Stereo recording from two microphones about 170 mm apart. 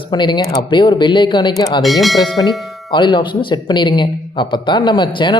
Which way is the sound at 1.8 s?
Centre (ahead or behind).